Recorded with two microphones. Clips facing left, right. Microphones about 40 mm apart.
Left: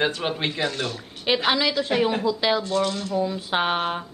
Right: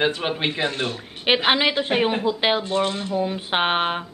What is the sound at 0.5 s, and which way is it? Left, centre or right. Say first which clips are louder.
Speech: right 2 dB; right.